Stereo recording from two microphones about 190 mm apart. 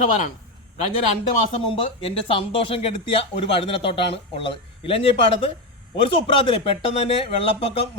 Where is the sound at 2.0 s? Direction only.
30° left (ahead or behind).